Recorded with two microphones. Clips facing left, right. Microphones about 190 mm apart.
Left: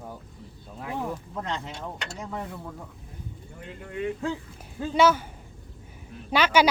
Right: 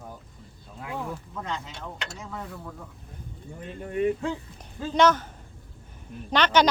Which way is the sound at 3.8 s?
30° right (ahead or behind).